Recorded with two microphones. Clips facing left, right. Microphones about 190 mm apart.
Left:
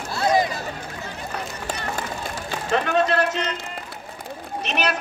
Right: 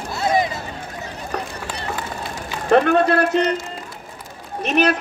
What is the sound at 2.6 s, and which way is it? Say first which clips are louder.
Speech: right 6 dB; 55° right (ahead or behind).